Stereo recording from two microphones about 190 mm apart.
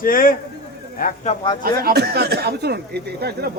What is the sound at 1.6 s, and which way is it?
Speech, 50° right (ahead or behind).